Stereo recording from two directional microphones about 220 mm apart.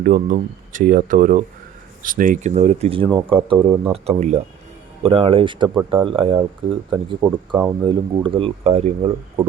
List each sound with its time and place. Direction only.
0.0 s speech: 35° right (ahead or behind)